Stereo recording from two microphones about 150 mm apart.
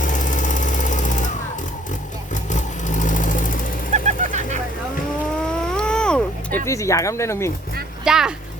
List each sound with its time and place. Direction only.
0.0 s a sound: 60° left (ahead or behind)
2.3 s sewing machine: 55° left (ahead or behind)
3.9 s vehicle: 50° right (ahead or behind)
5.5 s cat: 5° left (ahead or behind)
6.7 s speech: 20° left (ahead or behind)
8.0 s speech: 5° right (ahead or behind)